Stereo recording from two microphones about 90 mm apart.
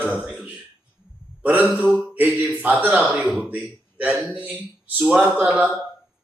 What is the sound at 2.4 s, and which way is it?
A man's voice, 15° right (ahead or behind).